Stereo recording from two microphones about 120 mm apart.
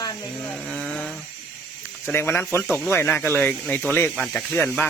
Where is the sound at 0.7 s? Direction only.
5° left (ahead or behind).